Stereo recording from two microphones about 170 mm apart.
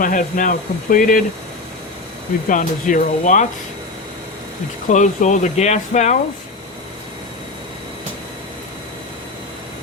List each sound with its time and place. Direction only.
0.0 s speech: 50° left (ahead or behind)
2.5 s speech: 50° left (ahead or behind)
4.9 s speech: 45° left (ahead or behind)